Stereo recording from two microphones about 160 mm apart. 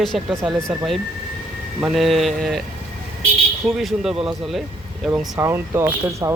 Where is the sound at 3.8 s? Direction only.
Centre (ahead or behind).